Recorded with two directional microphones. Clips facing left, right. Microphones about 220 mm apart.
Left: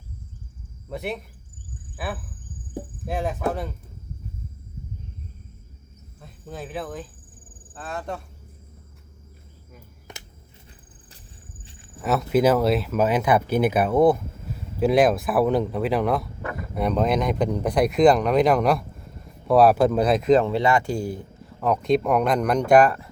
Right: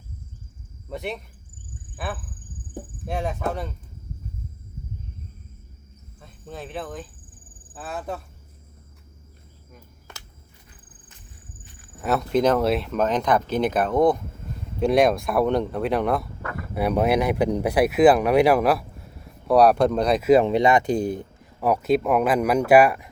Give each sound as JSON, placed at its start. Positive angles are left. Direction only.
{"t": 0.9, "sound": "speech", "side_deg": 0}
{"t": 6.1, "sound": "speech", "side_deg": 0}
{"t": 11.6, "sound": "walk", "side_deg": 25}
{"t": 12.0, "sound": "speech", "side_deg": 5}
{"t": 21.6, "sound": "speech", "side_deg": -5}